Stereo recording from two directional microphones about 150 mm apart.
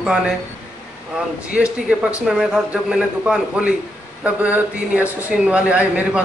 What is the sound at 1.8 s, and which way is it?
A man's voice, 5° right (ahead or behind).